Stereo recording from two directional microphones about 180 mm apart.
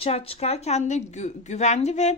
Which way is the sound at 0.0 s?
35° left (ahead or behind).